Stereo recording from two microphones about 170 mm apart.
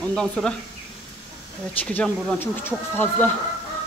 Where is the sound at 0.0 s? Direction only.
5° left (ahead or behind).